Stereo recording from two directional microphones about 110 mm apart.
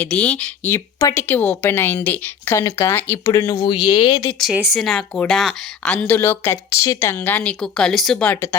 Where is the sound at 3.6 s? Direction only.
45° left (ahead or behind).